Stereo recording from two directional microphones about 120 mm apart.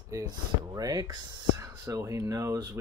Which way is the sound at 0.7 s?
30° right (ahead or behind).